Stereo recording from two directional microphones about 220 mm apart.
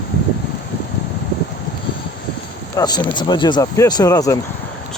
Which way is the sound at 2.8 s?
20° left (ahead or behind).